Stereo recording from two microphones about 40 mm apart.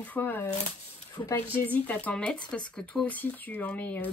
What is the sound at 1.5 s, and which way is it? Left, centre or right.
Speech, left.